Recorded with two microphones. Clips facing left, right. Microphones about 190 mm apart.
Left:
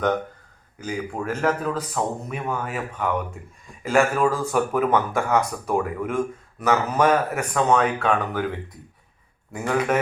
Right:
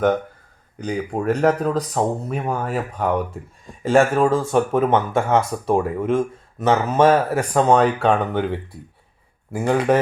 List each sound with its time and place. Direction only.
0.9 s speech: 35° right (ahead or behind)